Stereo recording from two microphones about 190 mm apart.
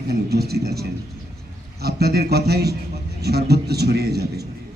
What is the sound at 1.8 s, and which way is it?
A man's voice, 55° right (ahead or behind).